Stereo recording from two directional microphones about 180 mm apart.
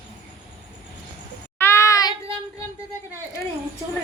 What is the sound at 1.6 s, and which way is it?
Child singing, 15° left (ahead or behind).